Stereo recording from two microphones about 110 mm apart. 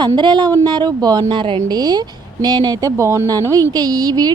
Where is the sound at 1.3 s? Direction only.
50° right (ahead or behind).